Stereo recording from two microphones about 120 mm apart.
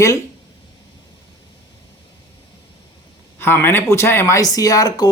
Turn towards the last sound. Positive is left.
turn(degrees=30)  # may be behind; listen again after turning